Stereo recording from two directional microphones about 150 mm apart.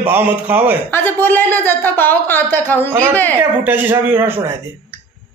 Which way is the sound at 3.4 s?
15° right (ahead or behind).